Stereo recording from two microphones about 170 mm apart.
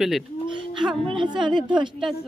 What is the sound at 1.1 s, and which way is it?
Speech, 30° right (ahead or behind).